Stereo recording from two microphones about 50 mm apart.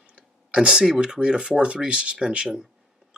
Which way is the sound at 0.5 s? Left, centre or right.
Centre.